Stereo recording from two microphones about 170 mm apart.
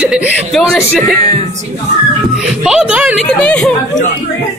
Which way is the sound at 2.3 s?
5° right (ahead or behind).